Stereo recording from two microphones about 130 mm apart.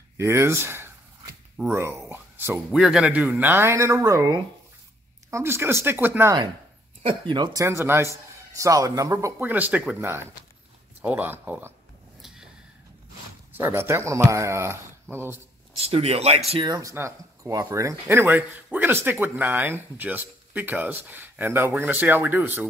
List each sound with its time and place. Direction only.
0.2 s a sound: 20° right (ahead or behind)
1.6 s speech: 15° right (ahead or behind)
7.0 s speech: 40° right (ahead or behind)
7.6 s speech: 20° right (ahead or behind)
12.2 s a sound: 5° right (ahead or behind)
13.6 s speech: 20° right (ahead or behind)
15.8 s speech: 50° right (ahead or behind)
16.6 s speech: 30° right (ahead or behind); by 22.7 s 15° right (ahead or behind)